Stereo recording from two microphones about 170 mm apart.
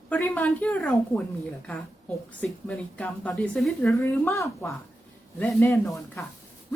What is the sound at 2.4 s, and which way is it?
A woman's voice, 5° left (ahead or behind).